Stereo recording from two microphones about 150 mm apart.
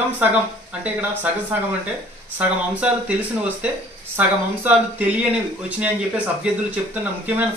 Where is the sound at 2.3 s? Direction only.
10° right (ahead or behind).